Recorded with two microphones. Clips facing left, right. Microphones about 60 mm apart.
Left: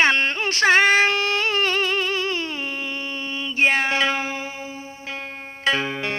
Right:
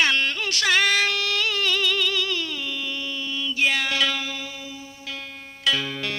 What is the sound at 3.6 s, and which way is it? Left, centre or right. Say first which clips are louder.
Speech: left 4 dB; left.